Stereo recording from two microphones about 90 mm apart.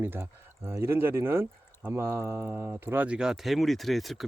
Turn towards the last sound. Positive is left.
turn(degrees=0)  # may be behind; listen again after turning